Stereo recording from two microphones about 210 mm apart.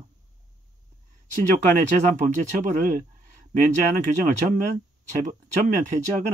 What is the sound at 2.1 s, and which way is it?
Speech, 35° right (ahead or behind).